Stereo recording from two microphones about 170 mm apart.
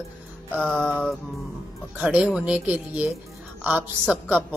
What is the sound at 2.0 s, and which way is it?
Speech, 5° right (ahead or behind).